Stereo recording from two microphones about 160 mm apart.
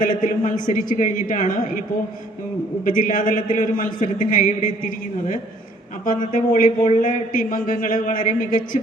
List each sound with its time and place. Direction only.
0.0 s speech: 55° left (ahead or behind)
2.8 s speech: 55° left (ahead or behind)
6.1 s speech: 55° left (ahead or behind)